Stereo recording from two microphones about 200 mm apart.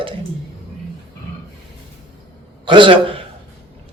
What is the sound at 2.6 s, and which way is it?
Speech, 25° right (ahead or behind).